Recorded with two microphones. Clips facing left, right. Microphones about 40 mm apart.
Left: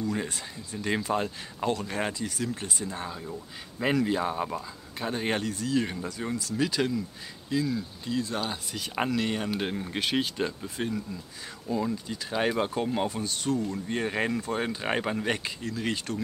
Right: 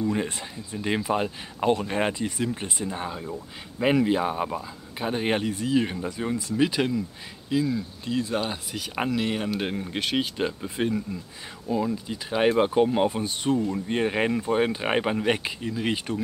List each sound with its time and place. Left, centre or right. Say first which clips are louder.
0.0 s speech: right 4 dB; right; by 10.3 s centre
10.3 s speech: right 3 dB; right